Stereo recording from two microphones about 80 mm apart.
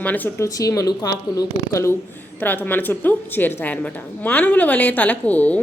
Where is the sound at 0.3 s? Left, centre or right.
Left.